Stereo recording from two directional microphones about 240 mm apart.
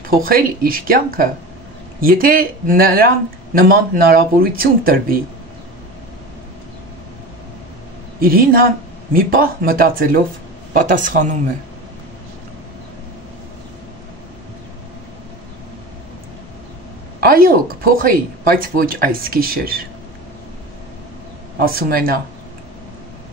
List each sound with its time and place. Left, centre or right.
0.1 s speech: right
8.2 s speech: right
17.2 s a woman's voice: right
21.5 s speech: right